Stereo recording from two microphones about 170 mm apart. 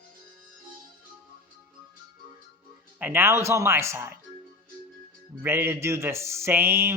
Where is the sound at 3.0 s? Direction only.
15° right (ahead or behind).